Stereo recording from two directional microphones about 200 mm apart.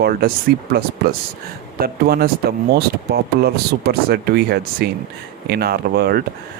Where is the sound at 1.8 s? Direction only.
50° right (ahead or behind).